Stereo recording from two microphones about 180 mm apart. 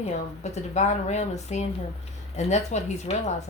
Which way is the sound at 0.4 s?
40° left (ahead or behind).